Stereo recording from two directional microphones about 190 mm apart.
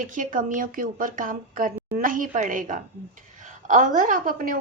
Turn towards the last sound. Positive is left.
turn(degrees=-45)  # may be behind; listen again after turning